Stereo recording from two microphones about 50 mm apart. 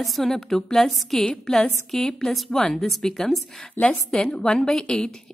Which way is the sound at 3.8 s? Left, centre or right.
Left.